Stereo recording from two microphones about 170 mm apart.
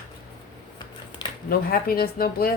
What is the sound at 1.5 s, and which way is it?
A woman's voice, 60° left (ahead or behind).